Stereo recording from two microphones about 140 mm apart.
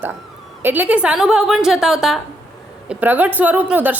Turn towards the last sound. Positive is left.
turn(degrees=-10)  # may be behind; listen again after turning